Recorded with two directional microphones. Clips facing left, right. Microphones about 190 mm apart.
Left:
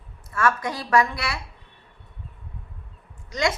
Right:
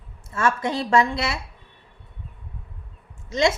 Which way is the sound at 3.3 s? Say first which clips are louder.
Right 4 dB; 25° right (ahead or behind).